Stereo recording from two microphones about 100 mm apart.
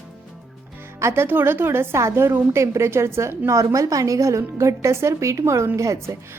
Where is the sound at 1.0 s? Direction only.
25° right (ahead or behind).